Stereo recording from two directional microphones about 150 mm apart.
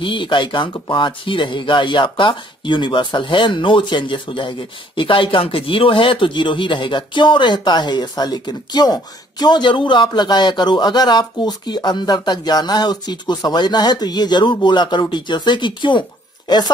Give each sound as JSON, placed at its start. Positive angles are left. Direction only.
{"t": 0.0, "sound": "speech", "side_deg": 35}